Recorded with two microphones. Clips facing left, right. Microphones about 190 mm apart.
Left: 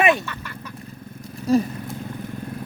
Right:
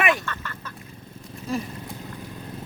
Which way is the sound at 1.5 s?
40° left (ahead or behind).